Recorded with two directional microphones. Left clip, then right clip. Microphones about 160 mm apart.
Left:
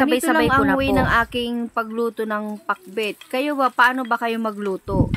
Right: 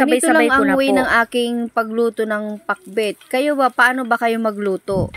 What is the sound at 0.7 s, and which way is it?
Speech, 20° right (ahead or behind).